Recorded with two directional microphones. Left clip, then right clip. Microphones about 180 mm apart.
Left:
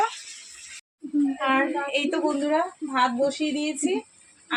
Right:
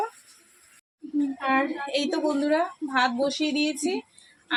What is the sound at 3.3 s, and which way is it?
Speech, 20° left (ahead or behind).